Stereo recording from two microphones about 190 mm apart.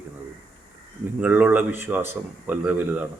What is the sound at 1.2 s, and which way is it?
Speech, 10° right (ahead or behind).